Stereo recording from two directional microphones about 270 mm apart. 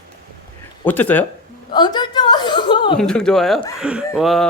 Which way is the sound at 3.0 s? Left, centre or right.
Centre.